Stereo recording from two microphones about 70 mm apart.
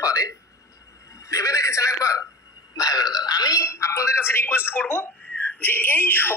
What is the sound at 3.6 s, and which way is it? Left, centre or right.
Speech, left.